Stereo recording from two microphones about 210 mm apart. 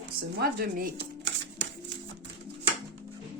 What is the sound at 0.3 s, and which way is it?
Speech, 45° right (ahead or behind).